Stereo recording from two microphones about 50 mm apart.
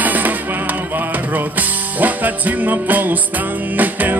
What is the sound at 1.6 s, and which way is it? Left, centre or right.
Music, right.